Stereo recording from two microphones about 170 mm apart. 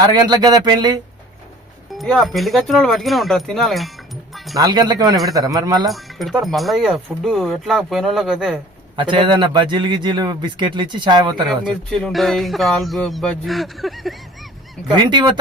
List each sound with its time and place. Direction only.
0.0 s a man's voice: 25° right (ahead or behind)
2.0 s speech: centre (ahead or behind)
4.5 s a man's voice: 25° right (ahead or behind)
5.9 s speech: centre (ahead or behind)
9.0 s a man's voice: 30° right (ahead or behind)
11.4 s speech: 5° left (ahead or behind)
14.8 s a man's voice: 25° right (ahead or behind)